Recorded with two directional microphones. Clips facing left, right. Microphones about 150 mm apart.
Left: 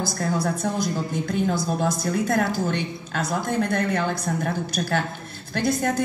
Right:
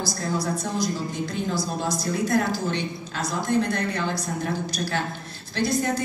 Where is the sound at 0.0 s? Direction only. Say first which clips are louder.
Left 2 dB; 55° left (ahead or behind).